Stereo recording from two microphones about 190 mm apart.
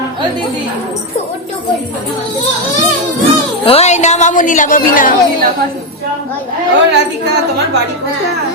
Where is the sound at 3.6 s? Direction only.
35° left (ahead or behind).